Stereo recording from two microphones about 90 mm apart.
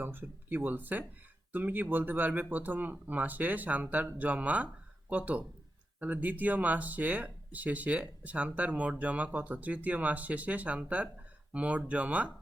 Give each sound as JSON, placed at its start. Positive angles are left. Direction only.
{"t": 0.0, "sound": "speech", "side_deg": -25}